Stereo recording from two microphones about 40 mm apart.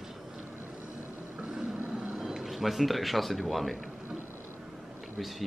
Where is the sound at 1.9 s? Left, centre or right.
Right.